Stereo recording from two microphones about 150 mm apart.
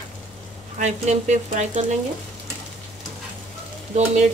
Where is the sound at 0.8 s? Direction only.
50° right (ahead or behind).